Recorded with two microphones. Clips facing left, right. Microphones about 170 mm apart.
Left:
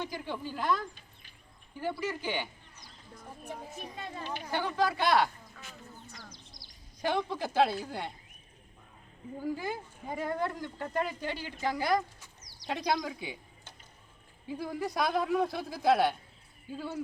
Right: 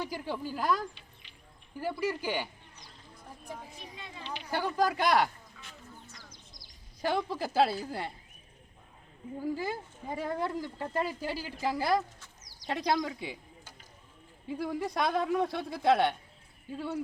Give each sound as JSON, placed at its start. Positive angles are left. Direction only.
{"t": 0.0, "sound": "speech", "side_deg": -5}
{"t": 1.8, "sound": "speech", "side_deg": -5}
{"t": 3.6, "sound": "speech", "side_deg": 50}
{"t": 4.5, "sound": "speech", "side_deg": -10}
{"t": 5.6, "sound": "a sound", "side_deg": 45}
{"t": 7.0, "sound": "speech", "side_deg": 0}
{"t": 9.4, "sound": "speech", "side_deg": 0}
{"t": 14.4, "sound": "speech", "side_deg": 0}